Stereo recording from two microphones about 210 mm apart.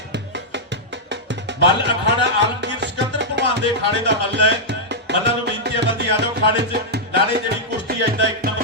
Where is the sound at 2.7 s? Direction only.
55° right (ahead or behind).